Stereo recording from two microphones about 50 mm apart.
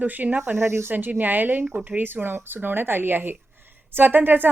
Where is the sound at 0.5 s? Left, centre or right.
Right.